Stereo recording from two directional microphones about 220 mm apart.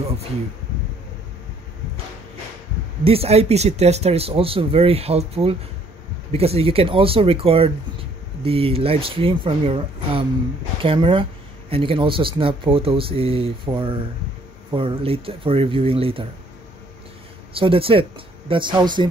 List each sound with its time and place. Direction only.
3.0 s speech: 25° right (ahead or behind)
17.6 s speech: 25° right (ahead or behind)